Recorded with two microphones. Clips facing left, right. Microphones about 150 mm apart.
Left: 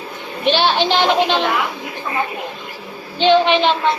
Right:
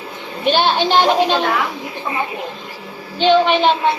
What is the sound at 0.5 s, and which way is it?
Speech, 50° right (ahead or behind).